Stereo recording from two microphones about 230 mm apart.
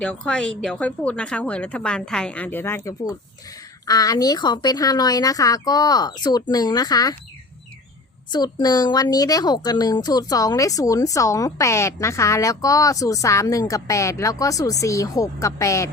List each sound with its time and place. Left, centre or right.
0.0 s speech: centre
8.3 s speech: centre